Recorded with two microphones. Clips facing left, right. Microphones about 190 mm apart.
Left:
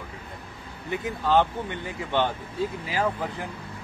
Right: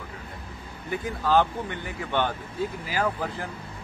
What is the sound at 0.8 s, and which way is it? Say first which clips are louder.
Speech: even; 20° left (ahead or behind).